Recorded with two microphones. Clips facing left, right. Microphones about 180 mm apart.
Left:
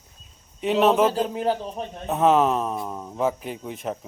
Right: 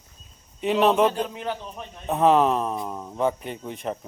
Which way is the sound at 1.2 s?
35° left (ahead or behind).